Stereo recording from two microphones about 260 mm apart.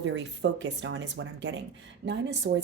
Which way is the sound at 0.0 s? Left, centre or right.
Right.